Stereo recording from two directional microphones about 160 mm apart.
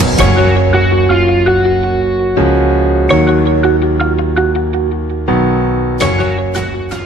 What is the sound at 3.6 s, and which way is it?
Music, centre (ahead or behind).